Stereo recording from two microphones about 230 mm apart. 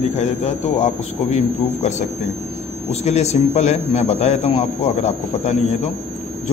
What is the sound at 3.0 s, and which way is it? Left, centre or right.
A man's voice, left.